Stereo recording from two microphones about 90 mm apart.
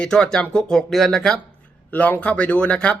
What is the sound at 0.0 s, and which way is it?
Speech, 10° left (ahead or behind).